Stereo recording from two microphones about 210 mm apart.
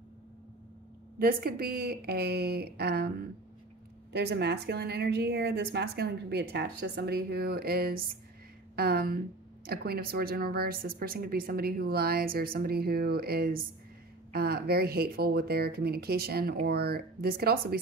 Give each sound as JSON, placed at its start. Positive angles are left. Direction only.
{"t": 1.2, "sound": "a woman's voice", "side_deg": -45}
{"t": 4.1, "sound": "a woman's voice", "side_deg": -50}